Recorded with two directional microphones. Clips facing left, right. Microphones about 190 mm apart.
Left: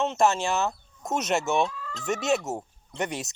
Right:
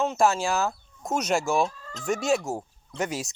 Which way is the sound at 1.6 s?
40° right (ahead or behind).